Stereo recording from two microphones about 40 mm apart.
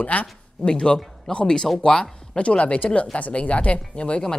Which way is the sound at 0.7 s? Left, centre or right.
Left.